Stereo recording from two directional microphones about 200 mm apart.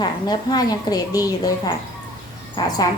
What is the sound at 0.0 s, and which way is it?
A woman's voice, 20° left (ahead or behind).